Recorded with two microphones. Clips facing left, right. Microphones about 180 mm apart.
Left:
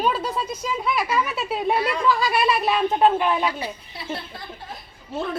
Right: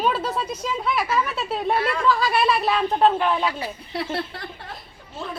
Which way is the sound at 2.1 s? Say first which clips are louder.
Right 1 dB; centre (ahead or behind).